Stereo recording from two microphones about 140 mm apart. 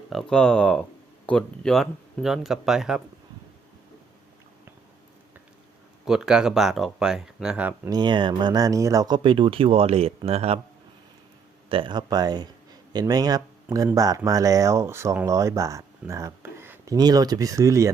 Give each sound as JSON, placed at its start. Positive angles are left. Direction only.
{"t": 0.1, "sound": "speech", "side_deg": 5}
{"t": 6.1, "sound": "speech", "side_deg": -5}
{"t": 7.9, "sound": "speech", "side_deg": -30}
{"t": 11.7, "sound": "speech", "side_deg": -35}